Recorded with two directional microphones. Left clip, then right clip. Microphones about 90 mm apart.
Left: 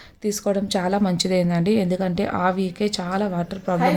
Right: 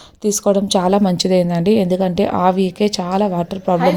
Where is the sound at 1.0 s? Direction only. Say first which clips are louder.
Right 6 dB; 40° right (ahead or behind).